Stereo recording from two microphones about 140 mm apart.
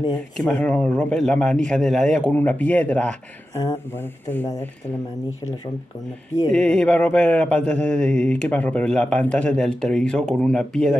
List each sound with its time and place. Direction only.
0.4 s speech: 5° left (ahead or behind)
6.5 s speech: 5° left (ahead or behind)